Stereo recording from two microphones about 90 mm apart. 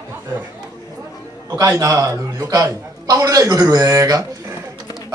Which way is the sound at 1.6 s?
35° right (ahead or behind).